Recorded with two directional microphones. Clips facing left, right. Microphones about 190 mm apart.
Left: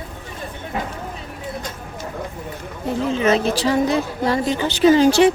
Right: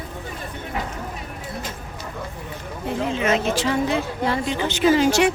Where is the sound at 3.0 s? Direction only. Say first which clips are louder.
Left 4 dB; 35° left (ahead or behind).